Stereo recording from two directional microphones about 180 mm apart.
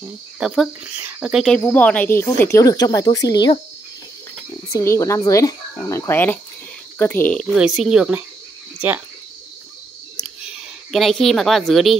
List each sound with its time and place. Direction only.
0.4 s speech: centre (ahead or behind); by 3.5 s 20° left (ahead or behind)
4.7 s speech: 15° left (ahead or behind)
7.5 s speech: centre (ahead or behind)
10.4 s a woman's voice: centre (ahead or behind)